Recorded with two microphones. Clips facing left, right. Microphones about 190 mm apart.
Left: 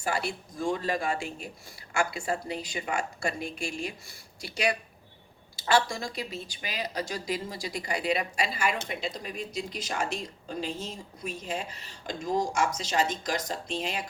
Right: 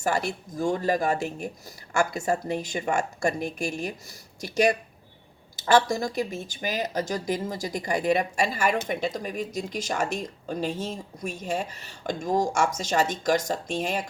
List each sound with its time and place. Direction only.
0.0 s a woman's voice: 45° right (ahead or behind)